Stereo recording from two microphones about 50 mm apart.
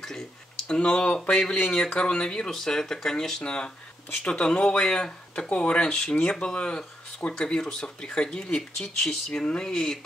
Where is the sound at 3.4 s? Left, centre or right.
Centre.